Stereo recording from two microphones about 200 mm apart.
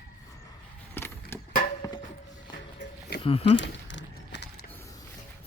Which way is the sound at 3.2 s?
30° left (ahead or behind).